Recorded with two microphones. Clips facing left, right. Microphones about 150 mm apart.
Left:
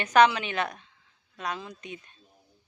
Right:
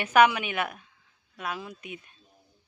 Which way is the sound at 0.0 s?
10° right (ahead or behind).